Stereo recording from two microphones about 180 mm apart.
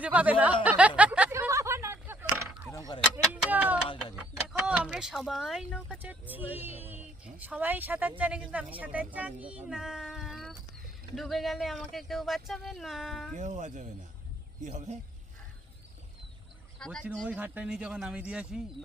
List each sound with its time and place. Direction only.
0.0 s speech: 10° right (ahead or behind)
0.6 s a sound: 10° right (ahead or behind)
2.6 s mechanisms: 20° left (ahead or behind)
3.3 s a sound: 10° right (ahead or behind)
3.9 s vehicle: 5° right (ahead or behind)
5.9 s speech: 10° right (ahead or behind)
13.3 s speech: 40° right (ahead or behind)
16.8 s speech: 5° left (ahead or behind)